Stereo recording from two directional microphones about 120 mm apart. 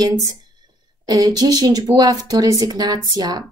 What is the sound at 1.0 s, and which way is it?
Speech, 35° right (ahead or behind).